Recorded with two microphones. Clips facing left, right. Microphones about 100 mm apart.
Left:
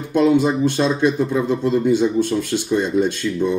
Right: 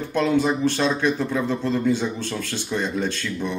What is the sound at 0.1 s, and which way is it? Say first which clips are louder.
Speech: left 5 dB; 20° left (ahead or behind).